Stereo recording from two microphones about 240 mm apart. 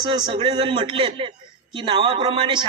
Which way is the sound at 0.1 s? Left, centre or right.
Centre.